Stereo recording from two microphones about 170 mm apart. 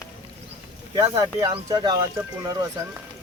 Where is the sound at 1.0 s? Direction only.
20° right (ahead or behind).